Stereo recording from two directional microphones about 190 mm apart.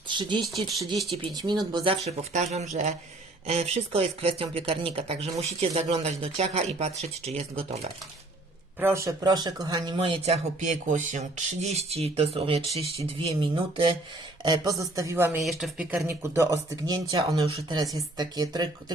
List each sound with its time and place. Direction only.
0.1 s speech: 25° right (ahead or behind)
8.8 s speech: 15° right (ahead or behind)
15.4 s speech: centre (ahead or behind); by 18.9 s 20° right (ahead or behind)